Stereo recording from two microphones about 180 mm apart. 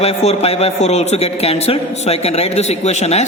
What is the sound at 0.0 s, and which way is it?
Speech, 35° left (ahead or behind).